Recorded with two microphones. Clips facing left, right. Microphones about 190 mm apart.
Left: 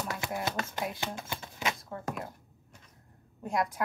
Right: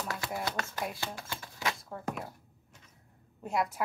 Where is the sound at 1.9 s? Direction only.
Centre (ahead or behind).